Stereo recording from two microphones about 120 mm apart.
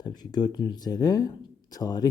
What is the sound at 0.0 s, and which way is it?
Speech, 35° left (ahead or behind).